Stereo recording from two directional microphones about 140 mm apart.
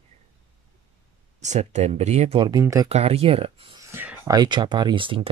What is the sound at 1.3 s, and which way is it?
Speech, 55° right (ahead or behind).